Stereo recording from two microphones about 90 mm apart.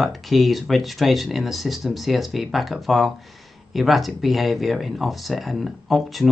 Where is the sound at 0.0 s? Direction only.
Centre (ahead or behind).